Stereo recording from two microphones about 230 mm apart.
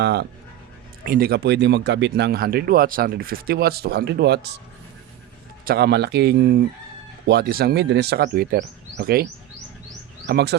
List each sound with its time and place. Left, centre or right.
0.0 s speech: right
5.6 s speech: right
10.2 s speech: right